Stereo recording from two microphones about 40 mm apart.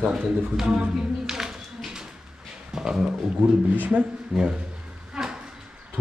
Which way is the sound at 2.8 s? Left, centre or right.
Centre.